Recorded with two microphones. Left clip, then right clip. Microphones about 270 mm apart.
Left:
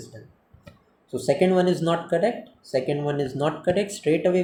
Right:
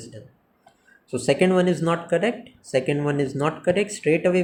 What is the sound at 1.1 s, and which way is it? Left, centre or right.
Speech, right.